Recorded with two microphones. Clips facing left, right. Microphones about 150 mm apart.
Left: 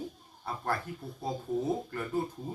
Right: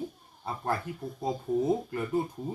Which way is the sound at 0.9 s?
20° right (ahead or behind).